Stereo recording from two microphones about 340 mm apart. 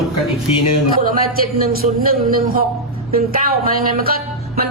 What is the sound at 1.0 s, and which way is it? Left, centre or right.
Speech, right.